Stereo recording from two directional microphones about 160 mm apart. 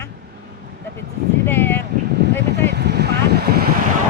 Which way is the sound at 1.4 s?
15° left (ahead or behind).